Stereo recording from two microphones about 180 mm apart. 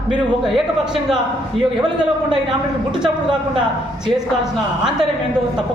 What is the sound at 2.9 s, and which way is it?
A man's voice, 5° right (ahead or behind).